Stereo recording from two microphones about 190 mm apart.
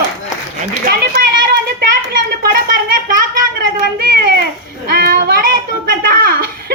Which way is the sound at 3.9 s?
50° right (ahead or behind).